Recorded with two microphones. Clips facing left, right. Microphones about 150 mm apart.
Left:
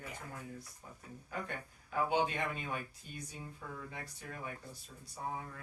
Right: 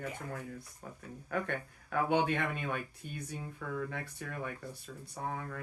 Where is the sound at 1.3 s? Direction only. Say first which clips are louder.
Right 7 dB; 60° right (ahead or behind).